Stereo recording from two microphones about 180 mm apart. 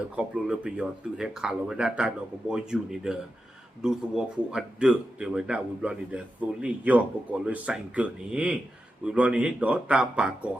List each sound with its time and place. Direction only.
0.2 s speech: 5° right (ahead or behind)